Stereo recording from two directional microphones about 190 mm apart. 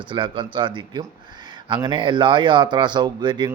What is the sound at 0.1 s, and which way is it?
Speech, 25° right (ahead or behind).